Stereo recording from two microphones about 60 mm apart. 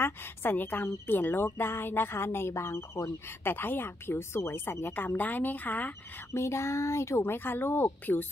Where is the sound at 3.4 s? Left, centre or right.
Left.